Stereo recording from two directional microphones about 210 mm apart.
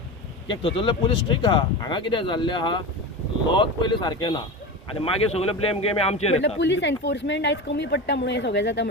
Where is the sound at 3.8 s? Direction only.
20° left (ahead or behind).